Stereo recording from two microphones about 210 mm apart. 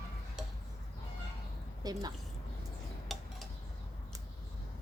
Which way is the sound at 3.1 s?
Centre (ahead or behind).